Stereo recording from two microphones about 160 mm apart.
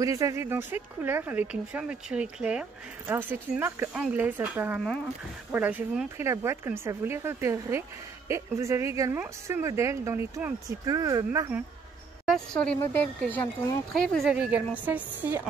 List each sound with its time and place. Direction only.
0.0 s speech: 20° right (ahead or behind)
12.3 s a woman's voice: 5° left (ahead or behind)
14.3 s speech: 5° right (ahead or behind)